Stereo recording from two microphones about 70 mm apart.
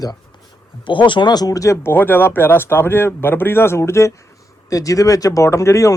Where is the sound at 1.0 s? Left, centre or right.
Left.